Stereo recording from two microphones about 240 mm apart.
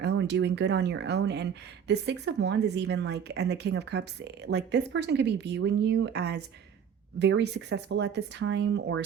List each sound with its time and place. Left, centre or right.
0.0 s speech: right